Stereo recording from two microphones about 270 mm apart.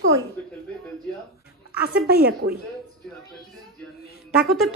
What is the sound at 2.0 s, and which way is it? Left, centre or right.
Speech, right.